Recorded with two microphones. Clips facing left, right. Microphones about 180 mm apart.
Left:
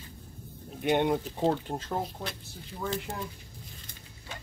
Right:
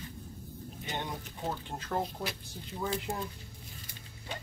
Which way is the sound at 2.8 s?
10° right (ahead or behind).